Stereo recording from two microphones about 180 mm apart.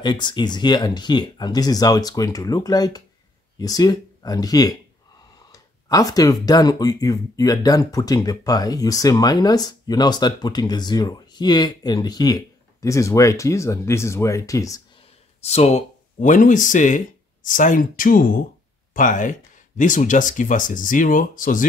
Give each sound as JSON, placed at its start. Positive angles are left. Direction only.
{"t": 0.0, "sound": "speech", "side_deg": 25}
{"t": 15.4, "sound": "speech", "side_deg": 35}